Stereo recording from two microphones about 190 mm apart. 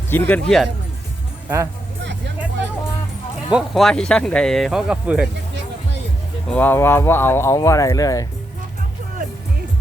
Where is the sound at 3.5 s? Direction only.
Centre (ahead or behind).